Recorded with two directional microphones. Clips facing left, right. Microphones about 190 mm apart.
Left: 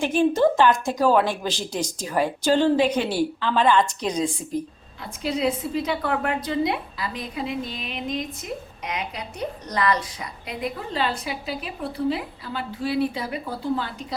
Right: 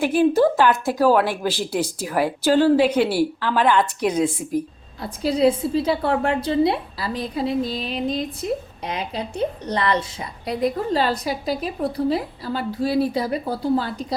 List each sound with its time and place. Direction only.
0.0 s speech: 10° right (ahead or behind)
5.0 s a woman's voice: 35° right (ahead or behind)